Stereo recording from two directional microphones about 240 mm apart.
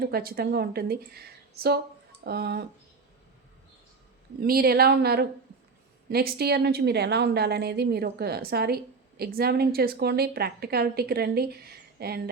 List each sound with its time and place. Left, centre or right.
0.0 s a woman's voice: right
4.4 s a woman's voice: right